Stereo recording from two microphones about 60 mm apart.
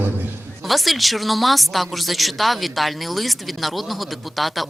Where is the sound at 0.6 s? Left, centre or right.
Centre.